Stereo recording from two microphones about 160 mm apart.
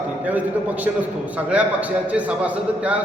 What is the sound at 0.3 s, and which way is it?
A man's voice, 10° right (ahead or behind).